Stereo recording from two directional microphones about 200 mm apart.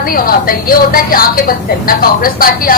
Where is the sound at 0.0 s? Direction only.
45° left (ahead or behind).